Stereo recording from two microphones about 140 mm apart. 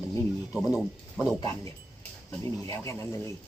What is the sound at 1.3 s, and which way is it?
Speech, 25° left (ahead or behind).